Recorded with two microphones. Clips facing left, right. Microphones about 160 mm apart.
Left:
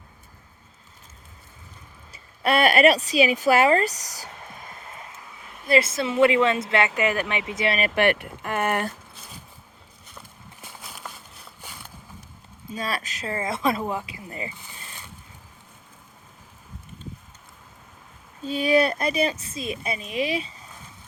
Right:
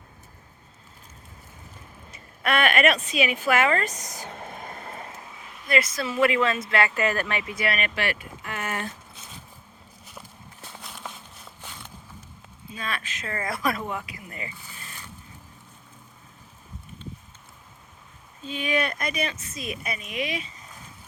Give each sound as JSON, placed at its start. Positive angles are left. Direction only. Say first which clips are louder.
{"t": 2.1, "sound": "speech", "louder": "left 3 dB", "side_deg": 30}
{"t": 4.3, "sound": "vehicle", "louder": "right 4 dB", "side_deg": -50}
{"t": 5.6, "sound": "speech", "louder": "left 4 dB", "side_deg": 30}
{"t": 7.9, "sound": "speech", "louder": "left 8 dB", "side_deg": 55}
{"t": 10.8, "sound": "a sound", "louder": "right 1 dB", "side_deg": 5}
{"t": 12.7, "sound": "speech", "louder": "left 4 dB", "side_deg": 35}
{"t": 18.4, "sound": "speech", "louder": "left 7 dB", "side_deg": 35}